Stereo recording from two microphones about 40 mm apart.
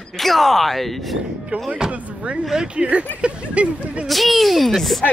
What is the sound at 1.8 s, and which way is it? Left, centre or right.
Speech, centre.